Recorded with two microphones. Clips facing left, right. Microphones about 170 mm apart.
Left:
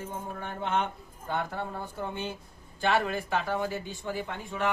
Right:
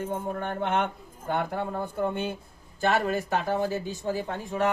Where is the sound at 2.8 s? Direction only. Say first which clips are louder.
Right 2 dB; 40° right (ahead or behind).